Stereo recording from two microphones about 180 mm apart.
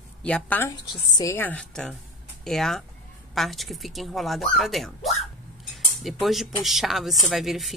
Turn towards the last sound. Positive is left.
turn(degrees=0)  # may be behind; listen again after turning